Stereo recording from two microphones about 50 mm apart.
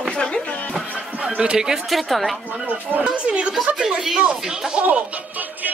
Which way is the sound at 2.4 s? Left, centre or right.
Right.